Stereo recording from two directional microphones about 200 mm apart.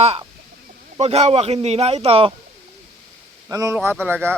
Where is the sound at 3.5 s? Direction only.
15° right (ahead or behind).